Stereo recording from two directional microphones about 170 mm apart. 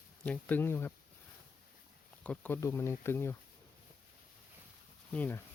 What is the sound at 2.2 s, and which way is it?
Speech, 10° left (ahead or behind).